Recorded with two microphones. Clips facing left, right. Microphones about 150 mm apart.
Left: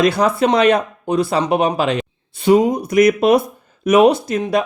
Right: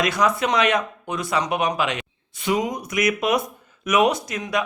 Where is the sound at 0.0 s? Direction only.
30° left (ahead or behind).